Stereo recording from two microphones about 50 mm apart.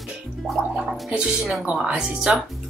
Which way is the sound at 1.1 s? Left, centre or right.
Centre.